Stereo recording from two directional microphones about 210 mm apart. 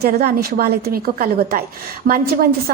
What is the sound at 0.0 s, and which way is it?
A woman's voice, 45° right (ahead or behind).